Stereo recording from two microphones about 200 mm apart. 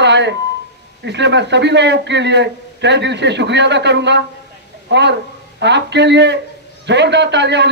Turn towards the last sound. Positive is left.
turn(degrees=-60)  # may be behind; listen again after turning